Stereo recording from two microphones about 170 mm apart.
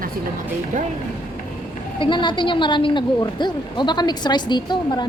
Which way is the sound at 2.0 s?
30° left (ahead or behind).